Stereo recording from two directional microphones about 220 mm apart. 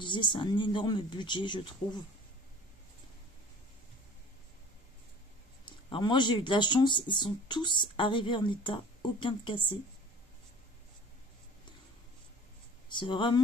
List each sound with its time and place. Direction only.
0.0 s speech: 20° left (ahead or behind)
5.7 s speech: 20° left (ahead or behind)
12.9 s speech: 20° left (ahead or behind)